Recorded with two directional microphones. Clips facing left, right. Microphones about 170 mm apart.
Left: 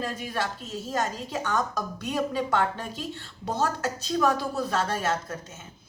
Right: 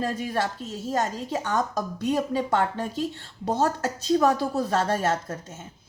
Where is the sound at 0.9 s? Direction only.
35° right (ahead or behind).